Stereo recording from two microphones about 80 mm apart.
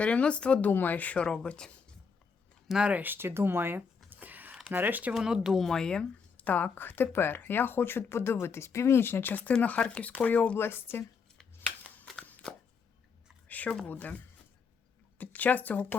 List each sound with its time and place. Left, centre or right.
0.0 s speech: centre
2.6 s speech: centre
5.1 s speech: centre
6.3 s speech: centre
10.6 s speech: left
13.5 s a sound: centre
13.8 s speech: centre
15.2 s speech: centre